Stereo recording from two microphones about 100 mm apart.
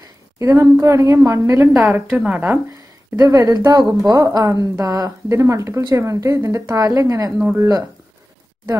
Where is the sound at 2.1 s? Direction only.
10° right (ahead or behind).